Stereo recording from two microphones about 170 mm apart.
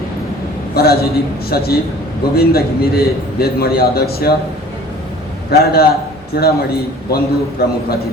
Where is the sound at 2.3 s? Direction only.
65° left (ahead or behind).